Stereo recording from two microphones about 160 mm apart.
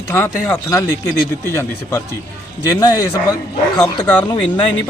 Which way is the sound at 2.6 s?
25° left (ahead or behind).